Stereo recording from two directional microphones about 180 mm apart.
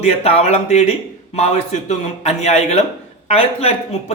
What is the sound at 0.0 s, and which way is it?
Speech, 35° left (ahead or behind).